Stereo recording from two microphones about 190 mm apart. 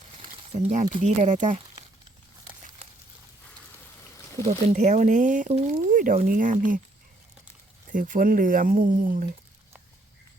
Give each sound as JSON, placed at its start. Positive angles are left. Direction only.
{"t": 0.5, "sound": "speech", "side_deg": -40}
{"t": 4.4, "sound": "speech", "side_deg": -40}
{"t": 7.9, "sound": "speech", "side_deg": -45}